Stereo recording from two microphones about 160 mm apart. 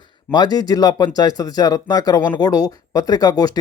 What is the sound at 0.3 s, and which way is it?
Speech, 25° left (ahead or behind).